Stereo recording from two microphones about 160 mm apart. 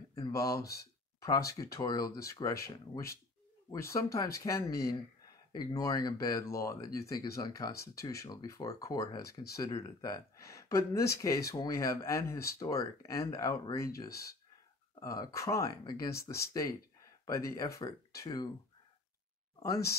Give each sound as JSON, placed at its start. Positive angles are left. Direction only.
{"t": 0.1, "sound": "speech", "side_deg": 20}